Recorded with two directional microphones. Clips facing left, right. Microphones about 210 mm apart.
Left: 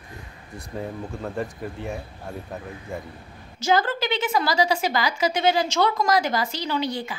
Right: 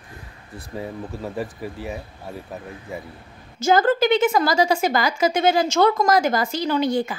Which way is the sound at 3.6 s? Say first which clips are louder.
Right 5 dB; 45° right (ahead or behind).